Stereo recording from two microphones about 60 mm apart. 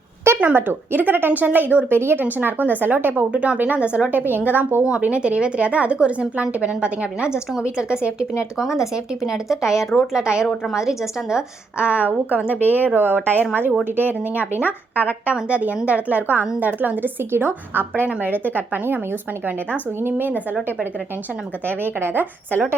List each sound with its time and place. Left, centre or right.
0.3 s a woman's voice: right
4.8 s a woman's voice: centre
8.5 s a woman's voice: centre; by 12.5 s right
12.5 s speech: left
12.7 s a woman's voice: right
20.0 s a woman's voice: right
21.7 s a woman's voice: right